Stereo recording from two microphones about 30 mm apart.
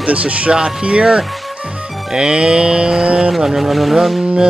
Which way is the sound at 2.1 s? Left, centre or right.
Right.